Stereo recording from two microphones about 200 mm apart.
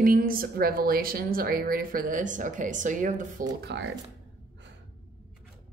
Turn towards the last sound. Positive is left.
turn(degrees=-55)  # may be behind; listen again after turning